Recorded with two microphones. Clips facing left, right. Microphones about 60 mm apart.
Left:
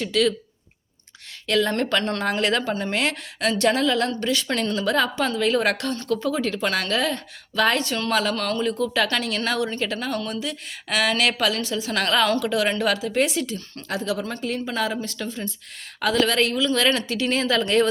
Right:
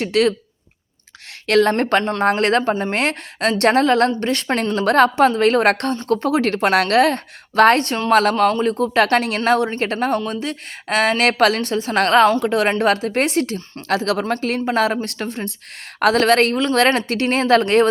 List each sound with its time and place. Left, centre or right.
0.0 s a woman's voice: right
1.5 s a woman's voice: right
1.7 s a woman's voice: right
8.4 s a woman's voice: right
13.8 s speech: right
14.3 s a woman's voice: right